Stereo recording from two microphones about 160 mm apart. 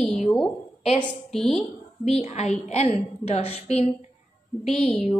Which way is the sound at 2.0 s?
40° left (ahead or behind).